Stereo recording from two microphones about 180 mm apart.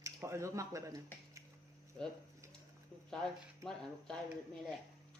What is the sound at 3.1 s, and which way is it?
Speech, 5° left (ahead or behind).